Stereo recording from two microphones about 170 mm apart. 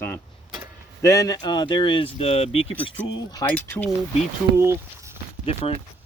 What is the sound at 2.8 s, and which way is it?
Speech, 20° left (ahead or behind).